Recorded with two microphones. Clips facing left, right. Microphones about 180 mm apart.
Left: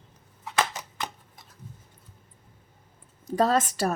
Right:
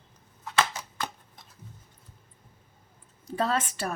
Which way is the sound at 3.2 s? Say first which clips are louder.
Left 5 dB; 40° left (ahead or behind).